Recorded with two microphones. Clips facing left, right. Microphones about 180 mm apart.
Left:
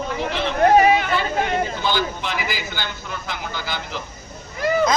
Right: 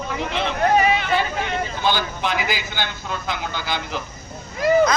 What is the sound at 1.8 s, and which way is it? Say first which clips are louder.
A woman's voice: right 1 dB; 50° right (ahead or behind).